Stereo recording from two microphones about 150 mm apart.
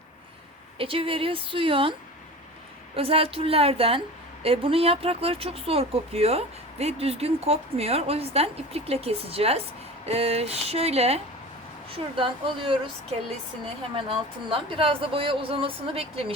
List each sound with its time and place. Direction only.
0.8 s speech: 35° right (ahead or behind)
14.4 s speech: 35° right (ahead or behind)